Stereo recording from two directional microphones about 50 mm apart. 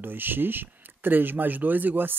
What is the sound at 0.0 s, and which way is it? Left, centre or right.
Speech, right.